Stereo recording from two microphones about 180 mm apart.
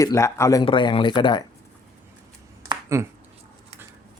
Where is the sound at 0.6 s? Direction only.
25° left (ahead or behind).